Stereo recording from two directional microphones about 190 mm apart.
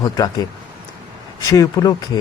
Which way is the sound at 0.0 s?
20° left (ahead or behind).